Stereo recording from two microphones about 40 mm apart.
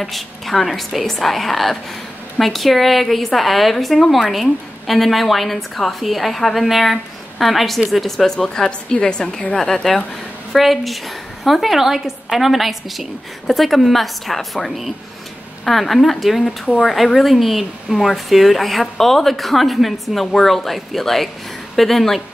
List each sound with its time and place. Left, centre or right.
0.0 s speech: centre
10.5 s speech: centre